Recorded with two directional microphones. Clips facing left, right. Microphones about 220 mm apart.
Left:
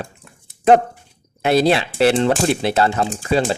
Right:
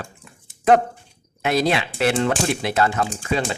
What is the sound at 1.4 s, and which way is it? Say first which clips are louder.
A man's voice: left 5 dB; 30° left (ahead or behind).